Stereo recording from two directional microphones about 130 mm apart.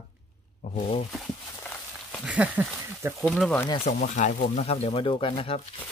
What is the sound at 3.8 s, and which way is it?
Speech, 70° left (ahead or behind).